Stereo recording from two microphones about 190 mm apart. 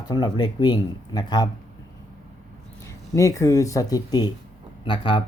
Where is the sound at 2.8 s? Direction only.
15° left (ahead or behind).